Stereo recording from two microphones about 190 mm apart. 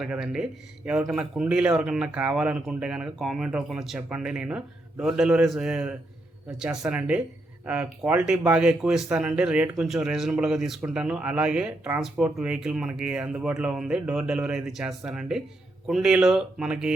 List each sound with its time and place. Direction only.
0.0 s speech: 5° right (ahead or behind)